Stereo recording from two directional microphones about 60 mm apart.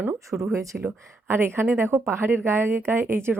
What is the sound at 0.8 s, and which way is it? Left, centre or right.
Speech, right.